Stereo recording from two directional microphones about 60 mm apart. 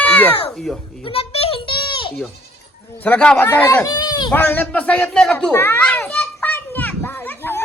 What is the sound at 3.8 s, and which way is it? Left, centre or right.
Speech, left.